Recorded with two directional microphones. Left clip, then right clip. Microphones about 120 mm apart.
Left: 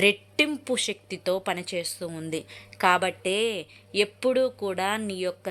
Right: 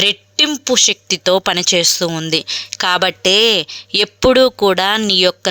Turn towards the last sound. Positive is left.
turn(degrees=-55)  # may be behind; listen again after turning